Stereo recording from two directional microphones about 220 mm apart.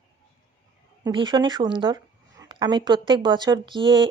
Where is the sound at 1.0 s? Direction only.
20° right (ahead or behind).